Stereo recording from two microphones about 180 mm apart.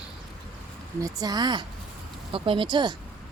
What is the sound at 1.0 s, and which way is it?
Speech, 20° right (ahead or behind).